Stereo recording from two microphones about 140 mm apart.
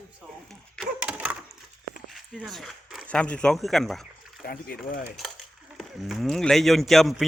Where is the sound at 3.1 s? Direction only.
10° left (ahead or behind).